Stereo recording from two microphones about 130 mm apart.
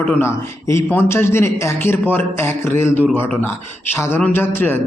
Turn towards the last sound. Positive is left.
turn(degrees=15)  # may be behind; listen again after turning